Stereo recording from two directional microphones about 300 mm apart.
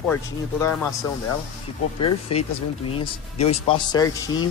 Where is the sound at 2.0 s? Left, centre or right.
Centre.